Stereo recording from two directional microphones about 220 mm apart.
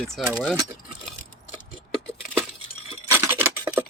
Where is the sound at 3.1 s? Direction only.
10° right (ahead or behind).